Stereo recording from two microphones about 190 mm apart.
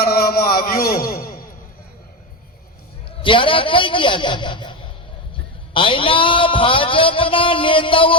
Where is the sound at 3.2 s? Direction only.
25° left (ahead or behind).